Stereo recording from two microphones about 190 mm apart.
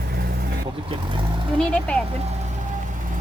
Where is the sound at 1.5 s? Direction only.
5° left (ahead or behind).